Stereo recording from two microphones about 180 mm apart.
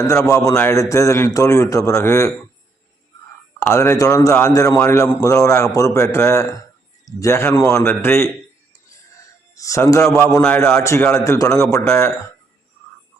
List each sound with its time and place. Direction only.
0.3 s a man's voice: 15° left (ahead or behind)
3.6 s a man's voice: 15° left (ahead or behind)
9.6 s a man's voice: 15° left (ahead or behind)